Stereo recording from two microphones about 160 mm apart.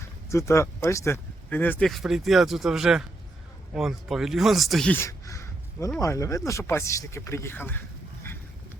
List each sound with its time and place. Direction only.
0.3 s speech: 20° left (ahead or behind); by 4.9 s centre (ahead or behind)
4.9 s a sound: 20° left (ahead or behind)
6.0 s speech: 20° left (ahead or behind)